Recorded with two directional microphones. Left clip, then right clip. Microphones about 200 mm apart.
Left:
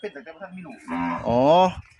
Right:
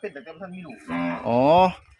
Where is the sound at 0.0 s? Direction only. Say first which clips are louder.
Even; 10° left (ahead or behind).